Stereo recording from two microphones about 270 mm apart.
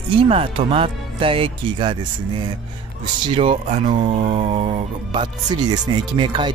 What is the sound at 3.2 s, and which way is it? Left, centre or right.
Speech, centre.